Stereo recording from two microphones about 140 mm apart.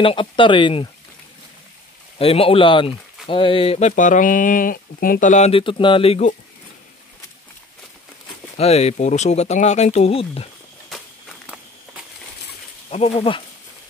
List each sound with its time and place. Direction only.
0.0 s speech: 40° left (ahead or behind)
2.1 s speech: 45° left (ahead or behind)
3.9 s speech: 65° left (ahead or behind)
5.5 s speech: 40° left (ahead or behind)
8.5 s speech: 50° left (ahead or behind)
12.9 s speech: 45° left (ahead or behind)